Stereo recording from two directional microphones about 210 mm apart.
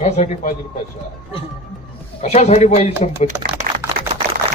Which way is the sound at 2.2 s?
30° left (ahead or behind).